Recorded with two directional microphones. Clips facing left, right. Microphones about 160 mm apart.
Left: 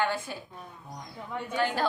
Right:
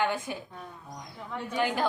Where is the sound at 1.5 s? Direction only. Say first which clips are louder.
Even; 15° right (ahead or behind).